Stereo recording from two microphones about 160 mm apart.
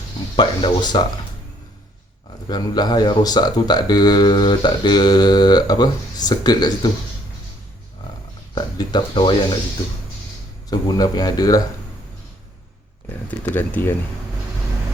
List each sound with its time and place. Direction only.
0.3 s speech: 30° left (ahead or behind)
2.5 s speech: 25° left (ahead or behind)
8.5 s speech: 30° left (ahead or behind)
10.7 s speech: 25° left (ahead or behind)
13.4 s speech: 10° left (ahead or behind)